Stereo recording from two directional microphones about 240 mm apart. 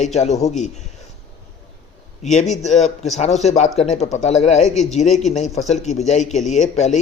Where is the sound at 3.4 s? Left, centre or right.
Left.